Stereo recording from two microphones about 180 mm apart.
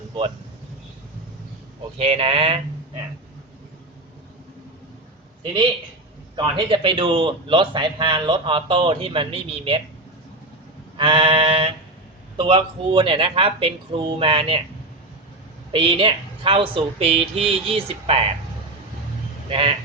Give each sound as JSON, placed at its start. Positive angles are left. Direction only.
{"t": 2.0, "sound": "a woman's voice", "side_deg": -35}
{"t": 6.3, "sound": "a man's voice", "side_deg": -30}
{"t": 10.9, "sound": "a woman's voice", "side_deg": -30}
{"t": 15.7, "sound": "a woman's voice", "side_deg": -30}
{"t": 19.5, "sound": "a woman's voice", "side_deg": -30}